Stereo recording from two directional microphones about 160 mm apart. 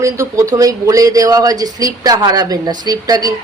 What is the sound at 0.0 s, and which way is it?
Speech, 20° right (ahead or behind).